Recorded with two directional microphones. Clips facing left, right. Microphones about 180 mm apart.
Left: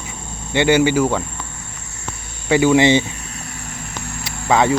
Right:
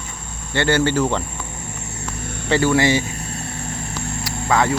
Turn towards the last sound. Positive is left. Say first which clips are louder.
# left 3 dB
turn(degrees=20)  # may be behind; listen again after turning